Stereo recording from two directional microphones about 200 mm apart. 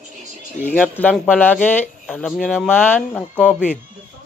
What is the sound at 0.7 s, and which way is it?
Speech, 10° left (ahead or behind).